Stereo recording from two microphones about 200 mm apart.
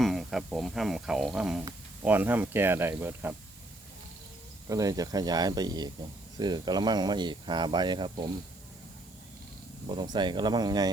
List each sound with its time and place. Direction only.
0.0 s speech: centre (ahead or behind)
4.7 s speech: 15° right (ahead or behind)
9.8 s speech: 25° right (ahead or behind)